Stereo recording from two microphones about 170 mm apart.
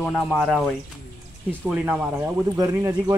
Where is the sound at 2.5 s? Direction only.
20° right (ahead or behind).